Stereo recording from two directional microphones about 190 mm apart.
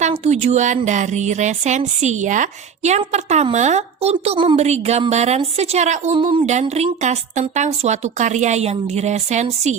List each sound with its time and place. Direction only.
0.0 s a woman's voice: 35° right (ahead or behind)